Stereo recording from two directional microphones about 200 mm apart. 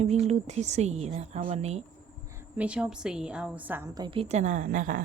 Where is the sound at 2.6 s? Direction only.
5° right (ahead or behind).